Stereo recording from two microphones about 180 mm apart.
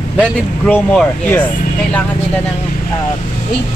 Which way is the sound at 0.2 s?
10° left (ahead or behind).